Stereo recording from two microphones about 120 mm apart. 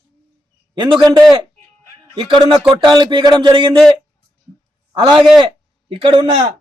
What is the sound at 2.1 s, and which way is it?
Speech, 45° right (ahead or behind).